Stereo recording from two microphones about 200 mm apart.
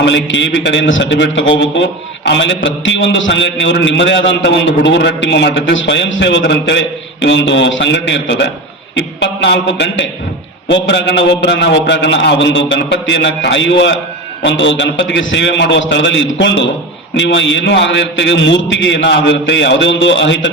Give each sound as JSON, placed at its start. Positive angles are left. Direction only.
{"t": 0.0, "sound": "a man's voice", "side_deg": 65}